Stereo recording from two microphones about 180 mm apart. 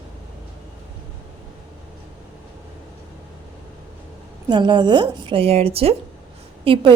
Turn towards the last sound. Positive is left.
turn(degrees=-30)  # may be behind; listen again after turning